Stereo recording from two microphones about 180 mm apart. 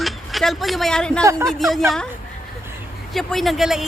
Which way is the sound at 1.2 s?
15° right (ahead or behind).